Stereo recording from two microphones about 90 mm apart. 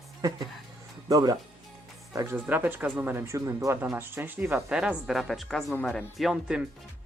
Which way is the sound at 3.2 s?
35° right (ahead or behind).